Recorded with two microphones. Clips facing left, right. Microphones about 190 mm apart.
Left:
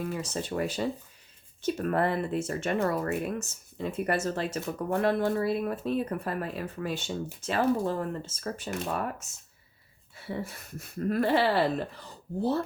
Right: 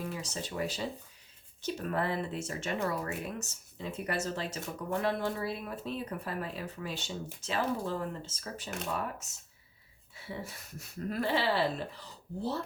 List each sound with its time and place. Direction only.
0.0 s speech: 55° left (ahead or behind)
10.4 s speech: 55° left (ahead or behind)